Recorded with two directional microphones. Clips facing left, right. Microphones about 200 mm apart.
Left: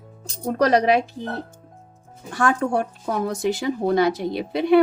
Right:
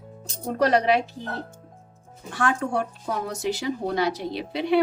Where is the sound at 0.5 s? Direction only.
40° left (ahead or behind).